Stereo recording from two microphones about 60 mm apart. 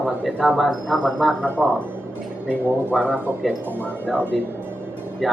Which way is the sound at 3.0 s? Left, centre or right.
Right.